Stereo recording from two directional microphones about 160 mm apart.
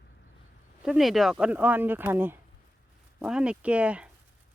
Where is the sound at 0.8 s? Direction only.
Centre (ahead or behind).